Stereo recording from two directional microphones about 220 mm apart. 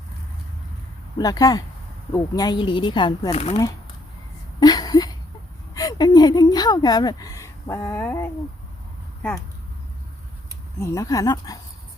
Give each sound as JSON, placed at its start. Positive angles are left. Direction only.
{"t": 1.2, "sound": "speech", "side_deg": 15}
{"t": 4.6, "sound": "a sound", "side_deg": 15}
{"t": 5.7, "sound": "speech", "side_deg": 15}
{"t": 10.8, "sound": "speech", "side_deg": 15}